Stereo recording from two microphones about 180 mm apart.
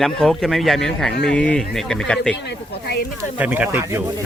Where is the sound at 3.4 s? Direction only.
10° right (ahead or behind).